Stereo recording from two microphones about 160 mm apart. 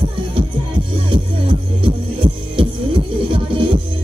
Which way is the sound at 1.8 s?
30° right (ahead or behind).